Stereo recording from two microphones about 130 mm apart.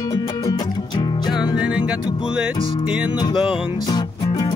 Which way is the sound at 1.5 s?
5° right (ahead or behind).